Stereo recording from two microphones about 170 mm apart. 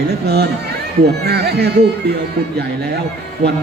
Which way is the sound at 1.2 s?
75° right (ahead or behind).